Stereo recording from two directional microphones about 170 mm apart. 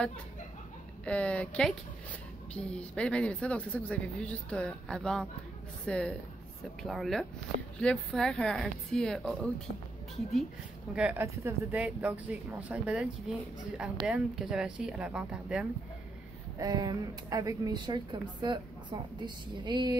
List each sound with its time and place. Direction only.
1.0 s a woman's voice: 5° left (ahead or behind)
11.0 s speech: 10° right (ahead or behind)
16.5 s speech: 25° right (ahead or behind)